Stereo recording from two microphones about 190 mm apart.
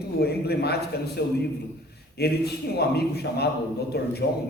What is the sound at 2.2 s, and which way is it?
A man's voice, 55° left (ahead or behind).